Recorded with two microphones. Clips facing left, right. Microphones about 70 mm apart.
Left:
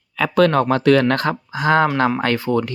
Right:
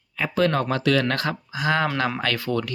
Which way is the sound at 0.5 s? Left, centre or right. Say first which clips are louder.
Left 7 dB; left.